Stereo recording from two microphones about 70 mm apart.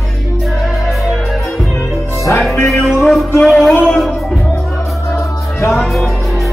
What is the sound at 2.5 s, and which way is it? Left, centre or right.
Music, left.